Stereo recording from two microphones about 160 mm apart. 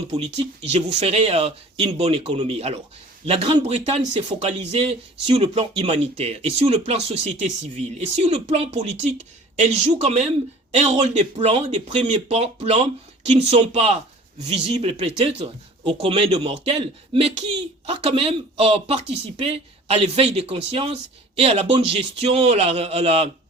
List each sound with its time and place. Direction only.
0.1 s speech: 40° right (ahead or behind)